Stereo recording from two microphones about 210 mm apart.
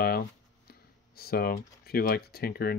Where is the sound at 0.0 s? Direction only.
45° left (ahead or behind).